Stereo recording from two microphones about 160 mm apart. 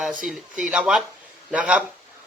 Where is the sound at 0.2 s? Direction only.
Centre (ahead or behind).